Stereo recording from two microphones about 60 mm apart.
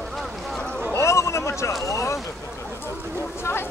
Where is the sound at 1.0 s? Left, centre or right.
Left.